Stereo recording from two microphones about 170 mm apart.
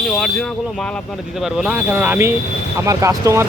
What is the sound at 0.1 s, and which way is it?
Speech, centre (ahead or behind).